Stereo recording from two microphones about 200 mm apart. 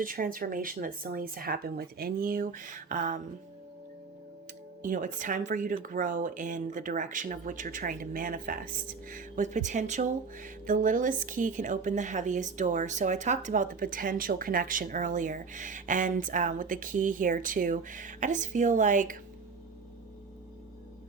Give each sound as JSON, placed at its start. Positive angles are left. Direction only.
{"t": 0.0, "sound": "speech", "side_deg": -45}
{"t": 4.8, "sound": "speech", "side_deg": -40}